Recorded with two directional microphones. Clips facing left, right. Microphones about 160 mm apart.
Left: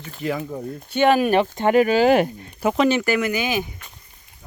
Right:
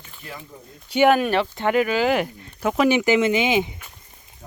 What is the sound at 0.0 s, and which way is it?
Speech, 85° left.